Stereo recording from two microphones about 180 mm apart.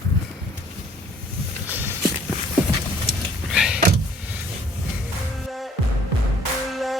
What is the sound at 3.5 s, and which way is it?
Door, 5° right (ahead or behind).